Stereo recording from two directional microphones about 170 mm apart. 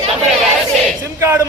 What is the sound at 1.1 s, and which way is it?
Speech, 15° right (ahead or behind).